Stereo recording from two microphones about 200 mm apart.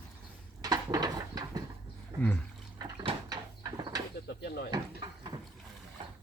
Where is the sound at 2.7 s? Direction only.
25° right (ahead or behind).